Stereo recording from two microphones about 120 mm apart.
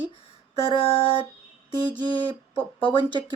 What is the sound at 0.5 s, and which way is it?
Speech, 55° left (ahead or behind).